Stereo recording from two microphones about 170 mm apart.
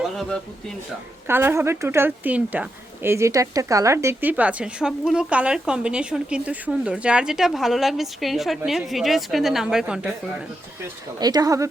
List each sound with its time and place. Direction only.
0.0 s a sound: centre (ahead or behind)
1.3 s speech: 15° right (ahead or behind)
11.2 s speech: 25° right (ahead or behind)